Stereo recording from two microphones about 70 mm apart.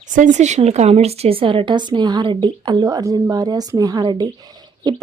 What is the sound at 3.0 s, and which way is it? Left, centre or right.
A woman's voice, right.